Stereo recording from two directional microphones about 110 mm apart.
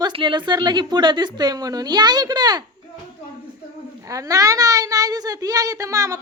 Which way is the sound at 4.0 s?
30° right (ahead or behind).